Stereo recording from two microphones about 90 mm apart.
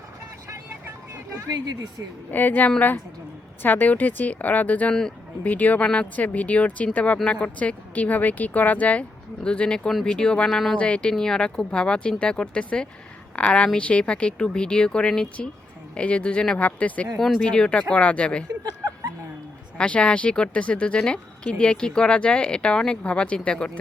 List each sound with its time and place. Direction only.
1.5 s speech: 50° right (ahead or behind)
2.3 s a woman's voice: 20° left (ahead or behind)
17.2 s speech: centre (ahead or behind)
19.8 s speech: 15° left (ahead or behind)